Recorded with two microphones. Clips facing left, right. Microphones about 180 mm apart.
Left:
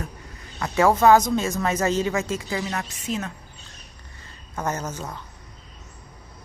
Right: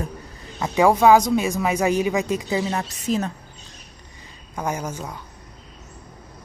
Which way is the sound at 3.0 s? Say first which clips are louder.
Right 7 dB; 35° right (ahead or behind).